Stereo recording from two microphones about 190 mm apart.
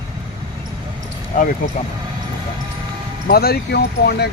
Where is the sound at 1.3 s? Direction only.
45° left (ahead or behind).